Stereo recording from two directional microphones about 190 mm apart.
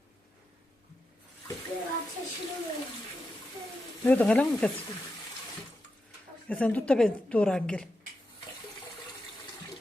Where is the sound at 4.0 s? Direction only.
10° left (ahead or behind).